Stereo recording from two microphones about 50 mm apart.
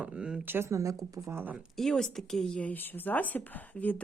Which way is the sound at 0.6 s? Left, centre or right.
Right.